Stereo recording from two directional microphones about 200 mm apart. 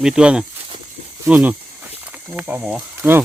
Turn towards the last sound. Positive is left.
turn(degrees=-10)  # may be behind; listen again after turning